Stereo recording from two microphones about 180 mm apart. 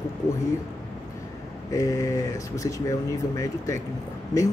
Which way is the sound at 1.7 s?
20° left (ahead or behind).